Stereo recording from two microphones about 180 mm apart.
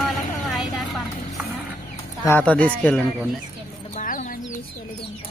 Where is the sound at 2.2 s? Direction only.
10° left (ahead or behind).